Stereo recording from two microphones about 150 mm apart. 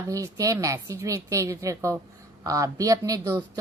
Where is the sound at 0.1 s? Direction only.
20° right (ahead or behind).